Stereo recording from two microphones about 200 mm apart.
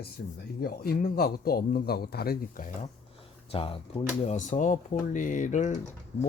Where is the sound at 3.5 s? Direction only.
25° left (ahead or behind).